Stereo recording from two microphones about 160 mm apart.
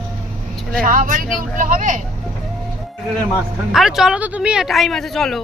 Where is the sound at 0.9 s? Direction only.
55° right (ahead or behind).